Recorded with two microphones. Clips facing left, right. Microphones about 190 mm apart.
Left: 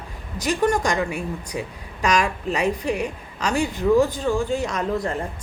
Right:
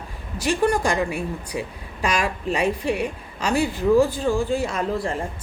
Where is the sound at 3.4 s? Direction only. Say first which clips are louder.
Right 1 dB; 10° right (ahead or behind).